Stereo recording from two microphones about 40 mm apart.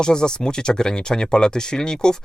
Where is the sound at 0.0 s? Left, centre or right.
Centre.